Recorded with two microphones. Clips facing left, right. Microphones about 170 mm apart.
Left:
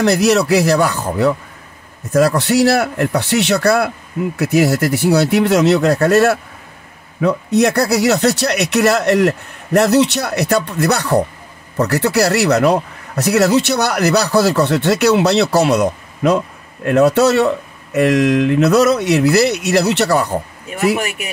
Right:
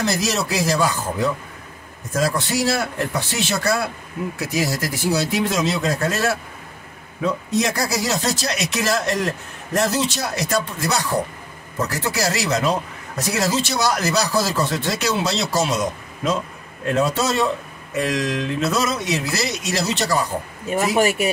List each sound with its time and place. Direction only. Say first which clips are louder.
0.0 s a man's voice: left 9 dB; 65° left (ahead or behind)
21.0 s speech: right 5 dB; 30° right (ahead or behind)